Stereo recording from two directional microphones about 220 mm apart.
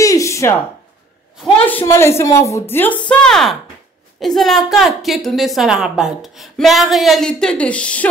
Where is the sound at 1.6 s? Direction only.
10° left (ahead or behind).